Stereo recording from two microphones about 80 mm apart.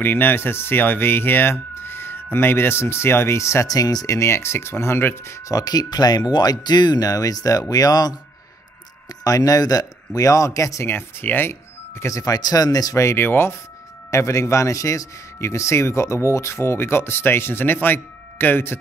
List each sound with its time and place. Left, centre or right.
0.0 s speech: left
3.6 s speech: left
5.5 s speech: left
9.2 s speech: left
10.9 s speech: left
13.0 s speech: left
14.1 s speech: left